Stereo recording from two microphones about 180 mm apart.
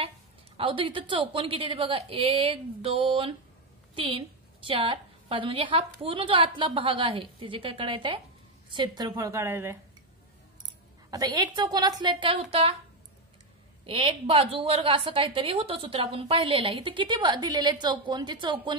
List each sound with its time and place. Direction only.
0.6 s a woman's voice: 30° right (ahead or behind); by 9.8 s 15° right (ahead or behind)
11.1 s a woman's voice: 20° right (ahead or behind)
13.8 s a woman's voice: 30° right (ahead or behind)